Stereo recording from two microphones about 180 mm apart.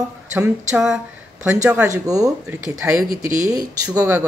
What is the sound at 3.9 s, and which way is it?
Speech, 15° right (ahead or behind).